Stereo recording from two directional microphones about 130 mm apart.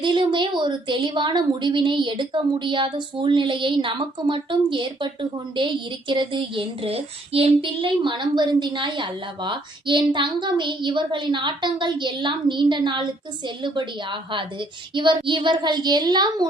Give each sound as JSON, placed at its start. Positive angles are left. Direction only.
{"t": 0.0, "sound": "child singing", "side_deg": -35}